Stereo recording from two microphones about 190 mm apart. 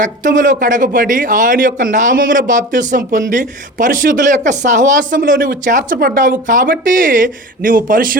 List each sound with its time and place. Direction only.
0.0 s speech: 45° right (ahead or behind)